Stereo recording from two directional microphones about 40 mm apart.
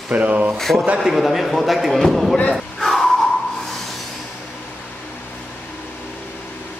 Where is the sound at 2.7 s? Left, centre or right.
Centre.